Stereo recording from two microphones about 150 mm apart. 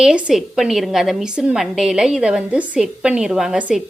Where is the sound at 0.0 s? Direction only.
5° right (ahead or behind).